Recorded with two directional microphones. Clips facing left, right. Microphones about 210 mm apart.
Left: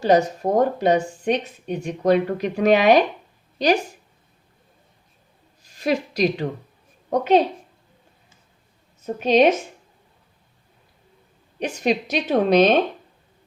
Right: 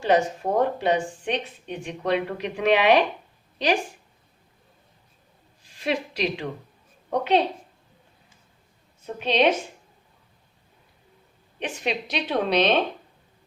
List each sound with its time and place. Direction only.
0.0 s speech: 40° left (ahead or behind)
5.6 s a woman's voice: 40° left (ahead or behind)
9.0 s a woman's voice: 45° left (ahead or behind)
11.6 s a woman's voice: 40° left (ahead or behind)